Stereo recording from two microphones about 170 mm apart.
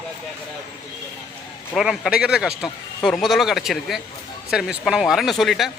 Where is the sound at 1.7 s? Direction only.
5° right (ahead or behind).